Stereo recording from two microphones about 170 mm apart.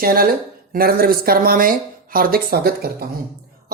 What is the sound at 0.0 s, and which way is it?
Speech, 60° right (ahead or behind).